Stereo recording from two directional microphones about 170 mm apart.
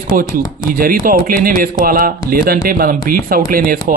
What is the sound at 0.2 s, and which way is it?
Speech, 55° right (ahead or behind).